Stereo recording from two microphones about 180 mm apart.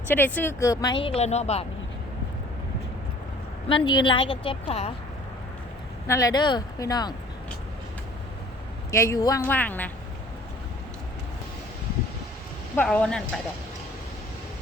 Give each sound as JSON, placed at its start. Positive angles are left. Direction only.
{"t": 0.1, "sound": "speech", "side_deg": 10}
{"t": 3.8, "sound": "speech", "side_deg": 25}
{"t": 6.1, "sound": "speech", "side_deg": 20}
{"t": 8.9, "sound": "a woman's voice", "side_deg": 15}
{"t": 12.7, "sound": "speech", "side_deg": 5}